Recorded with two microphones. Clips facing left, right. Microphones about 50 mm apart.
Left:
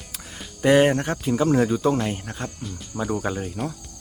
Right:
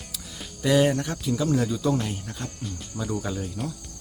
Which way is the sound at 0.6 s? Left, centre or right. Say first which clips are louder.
Left 4 dB; left.